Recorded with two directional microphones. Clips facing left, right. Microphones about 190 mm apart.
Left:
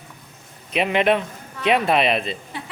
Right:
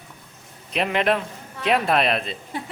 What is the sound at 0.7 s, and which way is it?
Speech, centre (ahead or behind).